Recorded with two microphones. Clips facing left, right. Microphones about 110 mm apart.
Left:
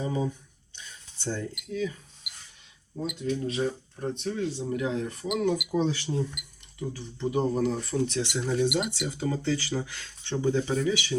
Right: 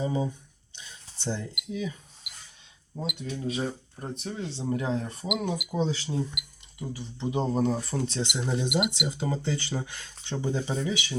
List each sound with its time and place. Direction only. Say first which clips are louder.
0.0 s a sound: right 1 dB; 20° right (ahead or behind)
1.5 s speech: left 2 dB; 20° right (ahead or behind)
3.1 s speech: left 3 dB; 10° right (ahead or behind)
4.7 s speech: even; 35° right (ahead or behind)
5.8 s speech: left 1 dB; 5° right (ahead or behind)
7.0 s speech: left 2 dB; 20° right (ahead or behind)
7.6 s speech: even; 35° right (ahead or behind)
8.2 s speech: left 3 dB; 20° right (ahead or behind)